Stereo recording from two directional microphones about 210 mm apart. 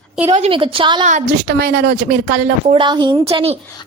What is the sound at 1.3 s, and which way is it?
A woman's voice, 50° right (ahead or behind).